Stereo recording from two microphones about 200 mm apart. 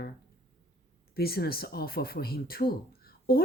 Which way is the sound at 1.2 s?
50° left (ahead or behind).